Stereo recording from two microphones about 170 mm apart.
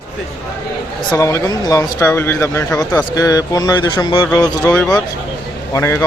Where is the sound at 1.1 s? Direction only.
15° left (ahead or behind).